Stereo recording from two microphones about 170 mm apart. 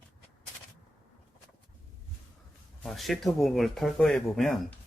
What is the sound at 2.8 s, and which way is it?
Speech, centre (ahead or behind).